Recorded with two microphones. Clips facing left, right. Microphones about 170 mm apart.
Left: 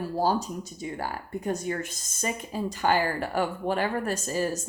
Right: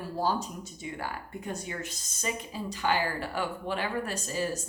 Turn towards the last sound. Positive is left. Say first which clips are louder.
# left 4 dB
turn(degrees=45)  # may be behind; listen again after turning